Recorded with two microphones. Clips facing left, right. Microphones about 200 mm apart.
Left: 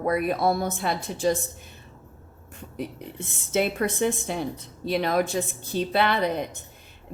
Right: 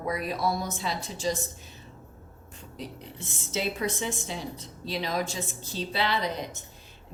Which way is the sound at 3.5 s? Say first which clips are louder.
Left 6 dB; 55° left (ahead or behind).